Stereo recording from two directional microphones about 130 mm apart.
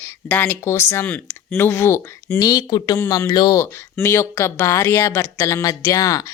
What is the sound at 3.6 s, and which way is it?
A woman's voice, 20° left (ahead or behind).